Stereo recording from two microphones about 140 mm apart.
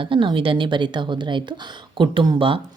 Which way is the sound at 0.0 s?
35° right (ahead or behind).